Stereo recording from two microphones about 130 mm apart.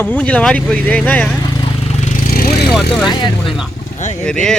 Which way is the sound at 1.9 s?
65° left (ahead or behind).